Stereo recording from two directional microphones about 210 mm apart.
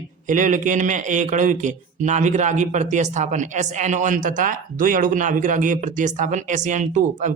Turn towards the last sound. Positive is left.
turn(degrees=-35)  # may be behind; listen again after turning